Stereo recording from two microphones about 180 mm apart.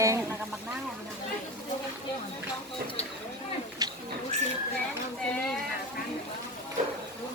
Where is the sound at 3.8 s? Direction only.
20° right (ahead or behind).